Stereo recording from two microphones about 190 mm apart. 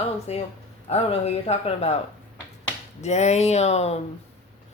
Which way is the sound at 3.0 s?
35° left (ahead or behind).